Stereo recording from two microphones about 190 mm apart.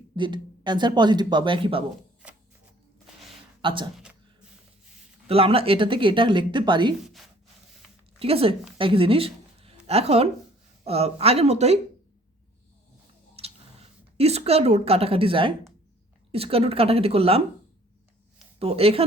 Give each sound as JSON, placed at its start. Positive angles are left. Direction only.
{"t": 0.2, "sound": "speech", "side_deg": -25}
{"t": 2.2, "sound": "a sound", "side_deg": -5}
{"t": 3.6, "sound": "speech", "side_deg": -25}
{"t": 5.3, "sound": "speech", "side_deg": -30}
{"t": 7.0, "sound": "speech", "side_deg": 0}
{"t": 8.2, "sound": "a woman's voice", "side_deg": -30}
{"t": 13.4, "sound": "a sound", "side_deg": -30}
{"t": 14.2, "sound": "a woman's voice", "side_deg": -35}
{"t": 18.6, "sound": "a woman's voice", "side_deg": -30}